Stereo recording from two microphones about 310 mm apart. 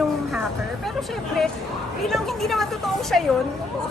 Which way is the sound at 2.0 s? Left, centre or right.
Centre.